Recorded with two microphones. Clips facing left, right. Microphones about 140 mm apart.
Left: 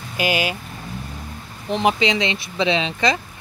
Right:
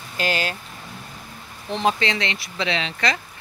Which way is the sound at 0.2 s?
10° left (ahead or behind).